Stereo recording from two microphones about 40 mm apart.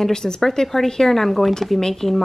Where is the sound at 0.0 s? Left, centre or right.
Centre.